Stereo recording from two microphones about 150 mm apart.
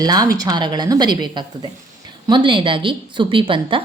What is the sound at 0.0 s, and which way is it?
A woman's voice, 25° right (ahead or behind).